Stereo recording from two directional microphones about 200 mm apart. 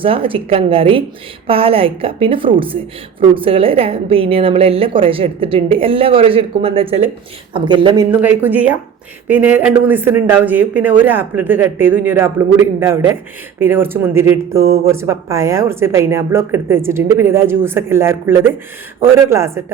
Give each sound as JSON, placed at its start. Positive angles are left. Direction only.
{"t": 0.0, "sound": "a woman's voice", "side_deg": -25}
{"t": 8.1, "sound": "speech", "side_deg": -10}